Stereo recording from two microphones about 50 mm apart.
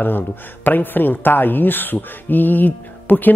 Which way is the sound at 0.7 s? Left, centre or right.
Left.